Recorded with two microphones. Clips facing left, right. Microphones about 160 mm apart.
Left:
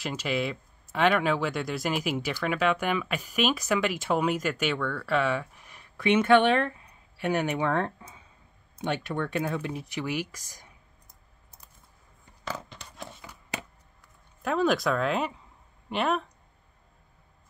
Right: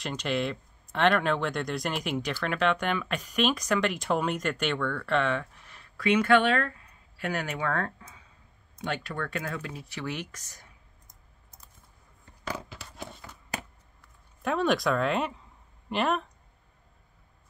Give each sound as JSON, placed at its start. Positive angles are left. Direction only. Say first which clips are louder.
{"t": 0.0, "sound": "speech", "louder": "even", "side_deg": 5}
{"t": 12.4, "sound": "a sound", "louder": "even", "side_deg": -10}
{"t": 14.4, "sound": "speech", "louder": "left 1 dB", "side_deg": 0}